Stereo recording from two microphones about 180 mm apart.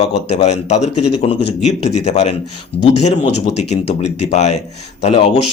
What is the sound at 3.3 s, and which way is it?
Speech, 40° left (ahead or behind).